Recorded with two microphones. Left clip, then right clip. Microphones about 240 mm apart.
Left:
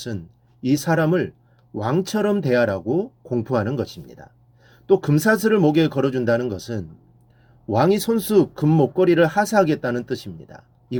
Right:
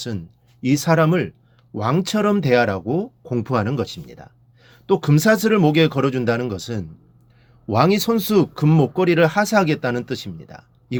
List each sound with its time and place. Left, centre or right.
0.6 s speech: right